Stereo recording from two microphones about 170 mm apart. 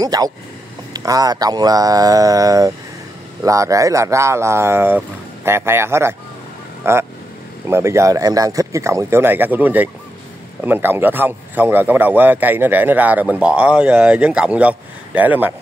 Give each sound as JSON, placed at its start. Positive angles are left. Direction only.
{"t": 0.0, "sound": "a man's voice", "side_deg": -20}